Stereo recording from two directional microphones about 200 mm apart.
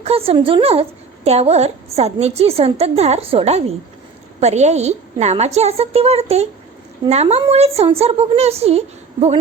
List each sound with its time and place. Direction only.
0.0 s a woman's voice: 30° right (ahead or behind)